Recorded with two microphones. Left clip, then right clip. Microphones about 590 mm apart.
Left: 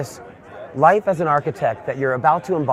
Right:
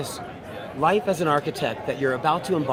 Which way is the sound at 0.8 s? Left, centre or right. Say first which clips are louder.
Left 7 dB; left.